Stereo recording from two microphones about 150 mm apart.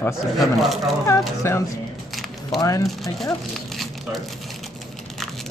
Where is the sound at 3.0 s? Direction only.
Centre (ahead or behind).